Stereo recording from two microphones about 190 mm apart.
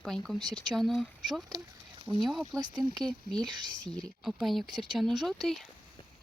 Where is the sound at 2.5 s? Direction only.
25° right (ahead or behind).